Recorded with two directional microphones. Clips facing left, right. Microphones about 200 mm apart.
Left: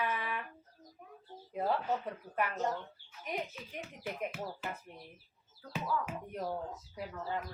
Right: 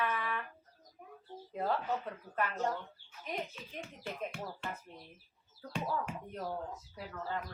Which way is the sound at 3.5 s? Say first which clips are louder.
Left 1 dB; 5° left (ahead or behind).